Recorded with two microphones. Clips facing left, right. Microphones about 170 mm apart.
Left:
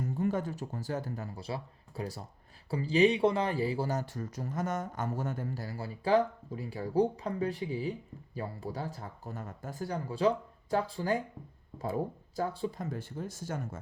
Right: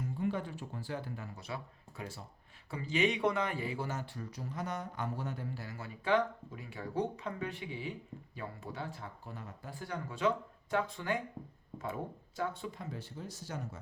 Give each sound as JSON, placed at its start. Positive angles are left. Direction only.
{"t": 0.0, "sound": "speech", "side_deg": 45}